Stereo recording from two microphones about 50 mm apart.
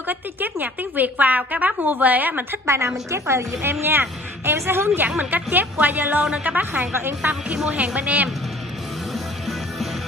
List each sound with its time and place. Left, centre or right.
0.1 s a woman's voice: right
2.6 s a woman's voice: right
3.8 s speech: right
5.0 s a woman's voice: right
7.7 s speech: right